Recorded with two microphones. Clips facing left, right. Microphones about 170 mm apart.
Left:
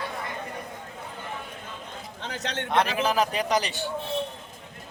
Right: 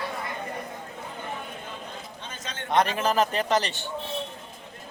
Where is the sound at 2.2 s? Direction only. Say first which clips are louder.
Left 6 dB; 80° left.